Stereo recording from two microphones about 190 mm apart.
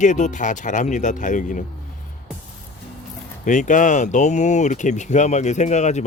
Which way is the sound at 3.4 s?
40° left (ahead or behind).